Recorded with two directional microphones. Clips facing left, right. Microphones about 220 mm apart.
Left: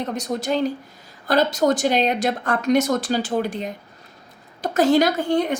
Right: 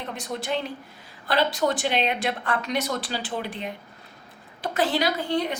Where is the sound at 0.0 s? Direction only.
40° left (ahead or behind).